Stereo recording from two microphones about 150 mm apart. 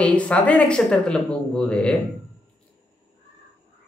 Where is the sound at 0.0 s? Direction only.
10° left (ahead or behind).